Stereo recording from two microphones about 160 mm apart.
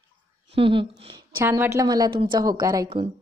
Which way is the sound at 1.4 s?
15° right (ahead or behind).